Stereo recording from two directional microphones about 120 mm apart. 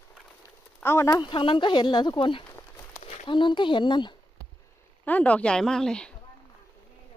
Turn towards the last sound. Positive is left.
turn(degrees=5)  # may be behind; listen again after turning